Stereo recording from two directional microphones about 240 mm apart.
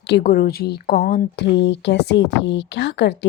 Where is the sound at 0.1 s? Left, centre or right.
Left.